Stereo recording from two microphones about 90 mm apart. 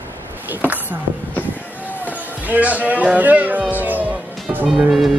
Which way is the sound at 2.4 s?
15° right (ahead or behind).